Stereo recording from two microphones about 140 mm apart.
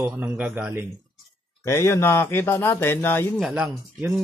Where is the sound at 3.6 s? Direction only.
15° right (ahead or behind).